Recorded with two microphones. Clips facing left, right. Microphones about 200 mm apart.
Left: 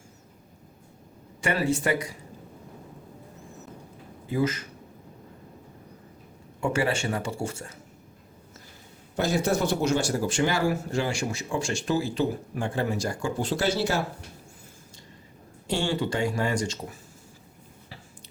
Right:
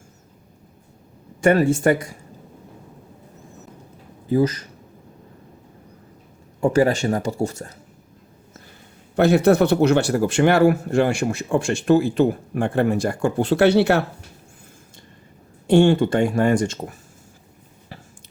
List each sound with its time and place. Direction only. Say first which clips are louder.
1.4 s speech: right 9 dB; 50° right (ahead or behind)
4.3 s speech: right 7 dB; 35° right (ahead or behind)
6.6 s speech: right 8 dB; 35° right (ahead or behind)
9.1 s speech: right 10 dB; 65° right (ahead or behind)
15.6 s speech: right 12 dB; 55° right (ahead or behind)